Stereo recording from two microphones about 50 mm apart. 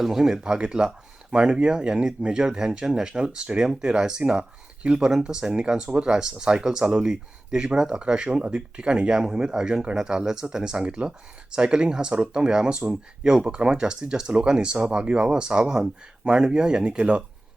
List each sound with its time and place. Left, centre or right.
0.0 s speech: centre